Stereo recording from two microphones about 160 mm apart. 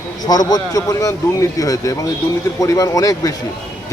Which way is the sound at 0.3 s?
25° left (ahead or behind).